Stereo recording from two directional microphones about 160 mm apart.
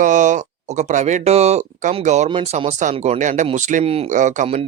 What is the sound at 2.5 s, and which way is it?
Speech, 45° right (ahead or behind).